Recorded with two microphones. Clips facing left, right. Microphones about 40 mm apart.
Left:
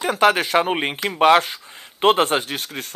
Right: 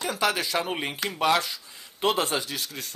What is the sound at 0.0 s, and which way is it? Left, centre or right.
Speech, left.